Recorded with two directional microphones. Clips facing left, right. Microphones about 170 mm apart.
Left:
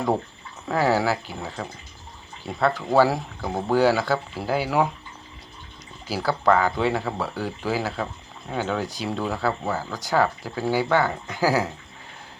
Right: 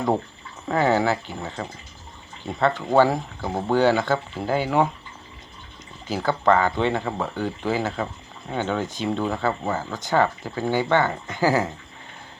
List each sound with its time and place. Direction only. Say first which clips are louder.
0.7 s speech: right 1 dB; 5° left (ahead or behind)
6.1 s speech: right 1 dB; 5° left (ahead or behind)